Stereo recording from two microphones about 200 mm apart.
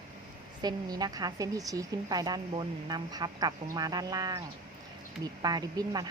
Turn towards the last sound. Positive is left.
turn(degrees=-20)  # may be behind; listen again after turning